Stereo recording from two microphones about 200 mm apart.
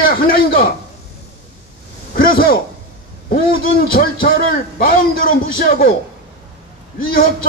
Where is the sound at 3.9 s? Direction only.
45° left (ahead or behind).